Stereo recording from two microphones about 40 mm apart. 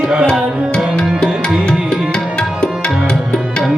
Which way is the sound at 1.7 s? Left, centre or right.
Left.